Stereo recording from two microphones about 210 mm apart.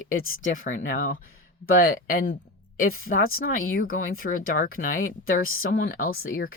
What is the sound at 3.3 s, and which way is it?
Speech, 40° left (ahead or behind).